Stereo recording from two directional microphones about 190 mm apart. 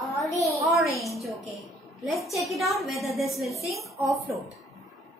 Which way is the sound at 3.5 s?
15° left (ahead or behind).